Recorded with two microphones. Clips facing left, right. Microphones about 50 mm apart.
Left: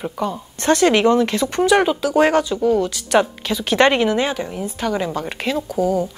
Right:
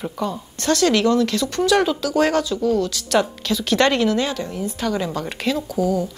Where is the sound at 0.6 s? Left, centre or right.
Left.